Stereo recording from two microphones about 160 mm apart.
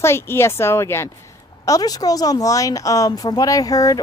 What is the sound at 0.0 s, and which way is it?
Speech, 15° left (ahead or behind).